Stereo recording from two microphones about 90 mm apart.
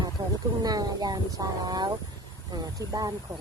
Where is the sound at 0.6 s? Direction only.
45° right (ahead or behind).